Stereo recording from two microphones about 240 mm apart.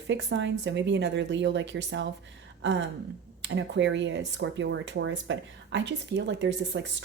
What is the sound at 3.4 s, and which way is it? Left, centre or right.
Speech, right.